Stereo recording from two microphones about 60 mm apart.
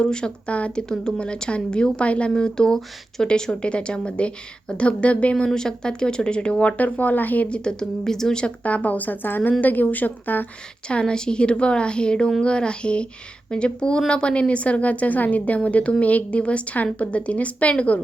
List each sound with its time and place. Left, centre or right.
0.0 s a woman's voice: centre
7.5 s speech: centre
8.6 s a woman's voice: left
10.8 s a woman's voice: centre